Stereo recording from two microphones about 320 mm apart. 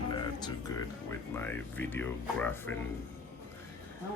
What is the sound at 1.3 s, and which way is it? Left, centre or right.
Speech, centre.